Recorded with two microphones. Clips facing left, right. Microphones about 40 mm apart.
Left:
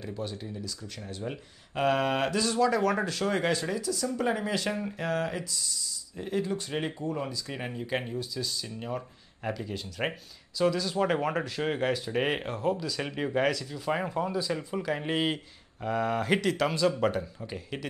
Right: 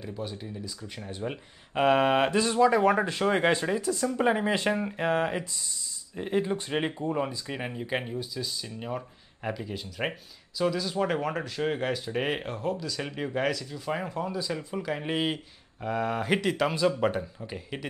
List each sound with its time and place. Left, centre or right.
0.0 s speech: centre